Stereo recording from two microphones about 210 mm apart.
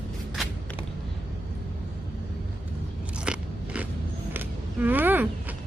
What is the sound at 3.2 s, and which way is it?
Biting, 5° right (ahead or behind).